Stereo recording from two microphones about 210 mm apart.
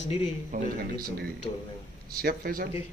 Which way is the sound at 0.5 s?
40° right (ahead or behind).